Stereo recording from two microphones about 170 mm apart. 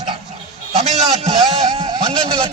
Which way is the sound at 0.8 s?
40° right (ahead or behind).